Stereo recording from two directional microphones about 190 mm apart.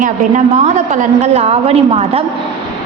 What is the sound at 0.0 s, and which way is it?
A woman's voice, 40° right (ahead or behind).